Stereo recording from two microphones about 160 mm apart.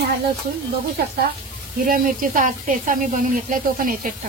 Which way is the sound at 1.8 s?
60° right (ahead or behind).